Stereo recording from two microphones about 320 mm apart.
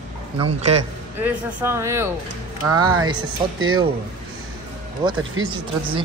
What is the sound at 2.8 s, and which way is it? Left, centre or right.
Speech, right.